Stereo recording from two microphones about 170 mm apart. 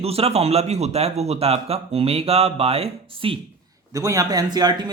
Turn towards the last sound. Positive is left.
turn(degrees=-25)  # may be behind; listen again after turning